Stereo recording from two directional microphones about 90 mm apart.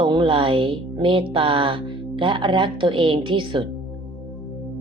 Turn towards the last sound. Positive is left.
turn(degrees=-65)  # may be behind; listen again after turning